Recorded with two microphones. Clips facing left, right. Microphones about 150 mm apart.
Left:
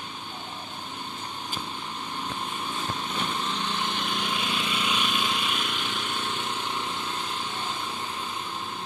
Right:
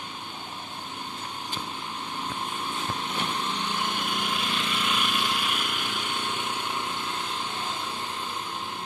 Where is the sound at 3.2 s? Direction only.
10° right (ahead or behind).